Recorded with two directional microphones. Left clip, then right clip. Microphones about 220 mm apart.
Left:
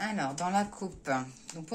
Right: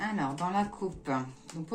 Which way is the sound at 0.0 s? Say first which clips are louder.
Even; 40° left (ahead or behind).